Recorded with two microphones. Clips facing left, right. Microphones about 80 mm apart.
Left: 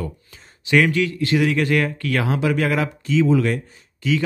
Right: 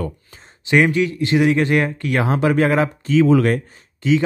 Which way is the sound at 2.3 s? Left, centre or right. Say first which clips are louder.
Right 5 dB; right.